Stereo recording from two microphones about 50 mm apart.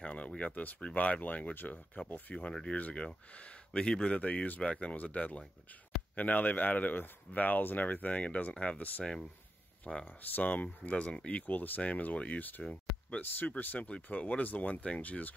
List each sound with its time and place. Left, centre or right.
0.0 s a sound: left
0.4 s speech: left
2.5 s speech: centre
4.2 s speech: left
10.0 s speech: left
11.4 s speech: left
14.0 s speech: left